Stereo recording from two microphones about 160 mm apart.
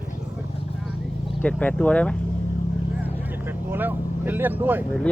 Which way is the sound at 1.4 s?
5° left (ahead or behind).